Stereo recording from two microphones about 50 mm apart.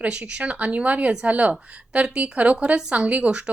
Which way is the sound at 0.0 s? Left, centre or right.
Right.